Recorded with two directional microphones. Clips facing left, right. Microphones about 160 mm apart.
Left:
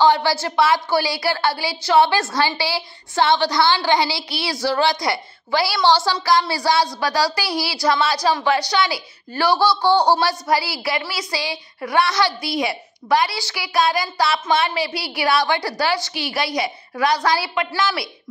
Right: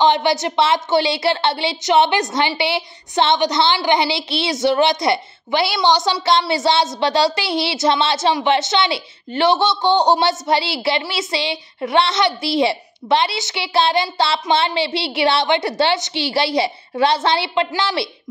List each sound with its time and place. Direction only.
0.0 s a woman's voice: 20° right (ahead or behind)